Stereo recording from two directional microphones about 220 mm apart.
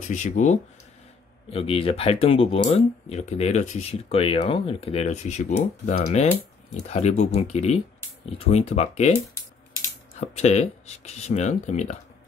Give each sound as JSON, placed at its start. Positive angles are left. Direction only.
{"t": 0.1, "sound": "speech", "side_deg": 35}
{"t": 10.2, "sound": "speech", "side_deg": 30}